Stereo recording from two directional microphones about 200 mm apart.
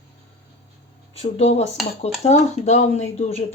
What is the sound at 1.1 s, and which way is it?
Speech, 30° left (ahead or behind).